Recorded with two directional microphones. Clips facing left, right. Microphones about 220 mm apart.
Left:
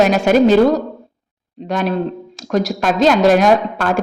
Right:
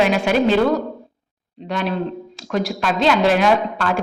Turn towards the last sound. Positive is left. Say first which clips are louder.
# left 4 dB
turn(degrees=45)  # may be behind; listen again after turning